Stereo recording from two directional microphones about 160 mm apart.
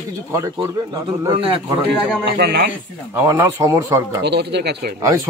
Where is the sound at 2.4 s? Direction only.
75° right (ahead or behind).